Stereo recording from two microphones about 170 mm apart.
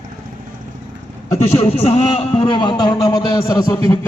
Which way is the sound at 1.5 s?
40° left (ahead or behind).